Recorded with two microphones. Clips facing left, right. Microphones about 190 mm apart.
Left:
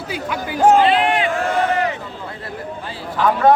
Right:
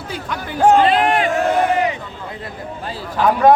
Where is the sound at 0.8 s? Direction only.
45° right (ahead or behind).